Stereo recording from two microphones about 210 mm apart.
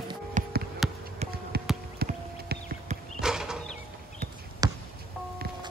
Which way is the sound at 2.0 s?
45° right (ahead or behind).